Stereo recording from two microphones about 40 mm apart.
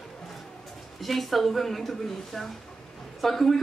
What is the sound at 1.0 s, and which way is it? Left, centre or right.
A woman's voice, centre.